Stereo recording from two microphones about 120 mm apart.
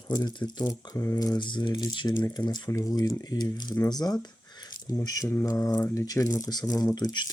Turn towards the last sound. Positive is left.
turn(degrees=35)  # may be behind; listen again after turning